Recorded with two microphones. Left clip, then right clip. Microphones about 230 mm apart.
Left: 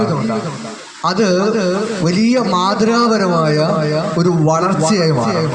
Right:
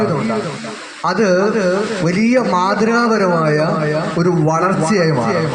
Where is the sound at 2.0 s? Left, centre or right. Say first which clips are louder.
Even; left.